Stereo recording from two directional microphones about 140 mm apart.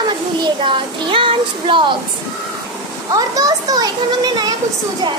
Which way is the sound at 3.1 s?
25° right (ahead or behind).